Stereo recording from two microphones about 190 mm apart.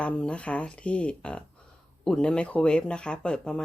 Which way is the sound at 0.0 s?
5° left (ahead or behind).